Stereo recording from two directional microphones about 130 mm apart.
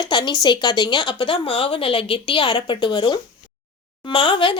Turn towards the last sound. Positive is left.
turn(degrees=40)  # may be behind; listen again after turning